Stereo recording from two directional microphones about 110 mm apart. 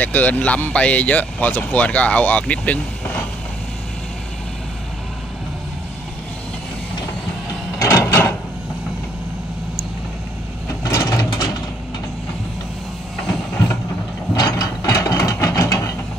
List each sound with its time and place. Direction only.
0.0 s speech: 15° left (ahead or behind)
7.8 s a sound: 30° left (ahead or behind)
10.7 s vehicle: 30° left (ahead or behind)
14.3 s mechanisms: 30° left (ahead or behind)